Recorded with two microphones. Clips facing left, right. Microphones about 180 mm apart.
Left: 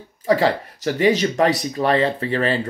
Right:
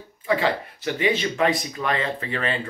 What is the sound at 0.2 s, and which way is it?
Speech, 40° left (ahead or behind).